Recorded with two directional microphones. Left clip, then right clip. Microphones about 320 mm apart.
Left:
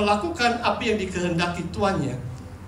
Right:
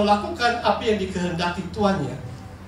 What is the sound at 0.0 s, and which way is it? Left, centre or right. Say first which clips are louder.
A man's voice: right 2 dB; left.